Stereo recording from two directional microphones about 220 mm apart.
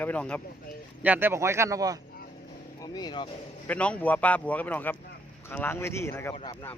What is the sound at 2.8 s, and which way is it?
Speech, 20° left (ahead or behind).